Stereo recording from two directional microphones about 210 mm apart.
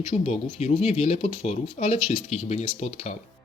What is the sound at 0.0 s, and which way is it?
Speech, 30° left (ahead or behind).